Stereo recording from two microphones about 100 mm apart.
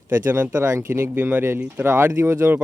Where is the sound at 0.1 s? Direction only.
20° right (ahead or behind).